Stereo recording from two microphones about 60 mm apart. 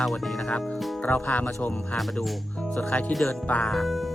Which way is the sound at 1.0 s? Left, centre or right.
Left.